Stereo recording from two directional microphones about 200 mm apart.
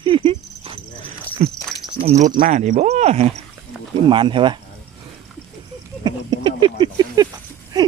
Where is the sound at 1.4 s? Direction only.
40° right (ahead or behind).